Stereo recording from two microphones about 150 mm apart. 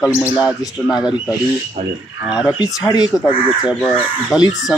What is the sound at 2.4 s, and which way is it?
Speech, 20° left (ahead or behind).